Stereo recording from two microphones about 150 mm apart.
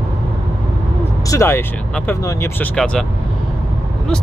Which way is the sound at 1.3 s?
20° left (ahead or behind).